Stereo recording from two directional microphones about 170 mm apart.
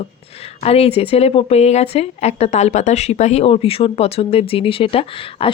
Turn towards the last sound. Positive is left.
turn(degrees=35)  # may be behind; listen again after turning